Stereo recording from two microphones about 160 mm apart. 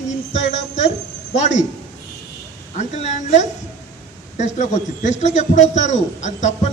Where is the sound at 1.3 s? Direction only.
50° left (ahead or behind).